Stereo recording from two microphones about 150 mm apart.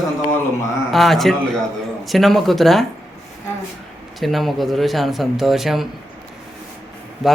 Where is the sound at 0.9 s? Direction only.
Centre (ahead or behind).